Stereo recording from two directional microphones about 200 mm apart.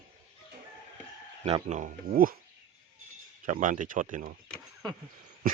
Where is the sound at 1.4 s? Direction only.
30° right (ahead or behind).